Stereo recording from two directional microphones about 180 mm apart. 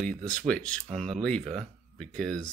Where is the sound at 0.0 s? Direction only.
5° left (ahead or behind).